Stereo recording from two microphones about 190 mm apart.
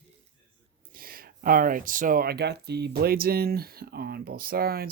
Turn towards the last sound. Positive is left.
turn(degrees=-50)  # may be behind; listen again after turning